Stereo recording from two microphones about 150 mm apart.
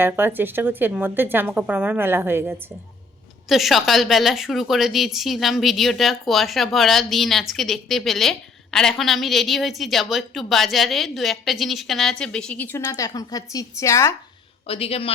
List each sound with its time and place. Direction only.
0.0 s speech: 15° right (ahead or behind)
3.5 s a woman's voice: centre (ahead or behind); by 14.2 s 20° left (ahead or behind)
14.7 s speech: 40° left (ahead or behind)